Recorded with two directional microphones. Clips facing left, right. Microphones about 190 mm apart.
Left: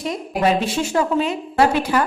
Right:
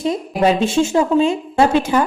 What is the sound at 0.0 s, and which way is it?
Speech, 25° right (ahead or behind).